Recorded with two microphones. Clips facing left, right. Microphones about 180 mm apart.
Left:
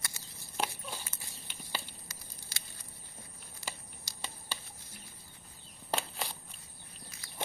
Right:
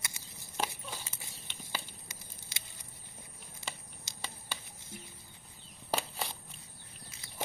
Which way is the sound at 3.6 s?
20° right (ahead or behind).